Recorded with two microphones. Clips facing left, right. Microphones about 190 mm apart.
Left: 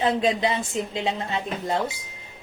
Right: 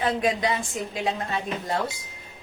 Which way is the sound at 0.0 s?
25° left (ahead or behind).